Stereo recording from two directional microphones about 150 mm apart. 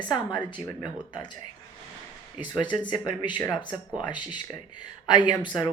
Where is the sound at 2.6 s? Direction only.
30° left (ahead or behind).